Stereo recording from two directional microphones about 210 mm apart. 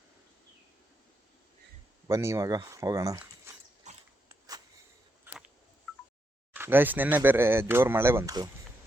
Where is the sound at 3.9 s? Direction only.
35° right (ahead or behind).